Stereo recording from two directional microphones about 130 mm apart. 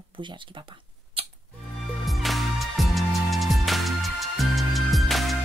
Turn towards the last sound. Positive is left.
turn(degrees=0)  # may be behind; listen again after turning